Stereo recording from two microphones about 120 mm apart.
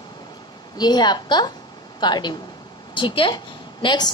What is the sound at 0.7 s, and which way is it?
A woman's voice, 35° left (ahead or behind).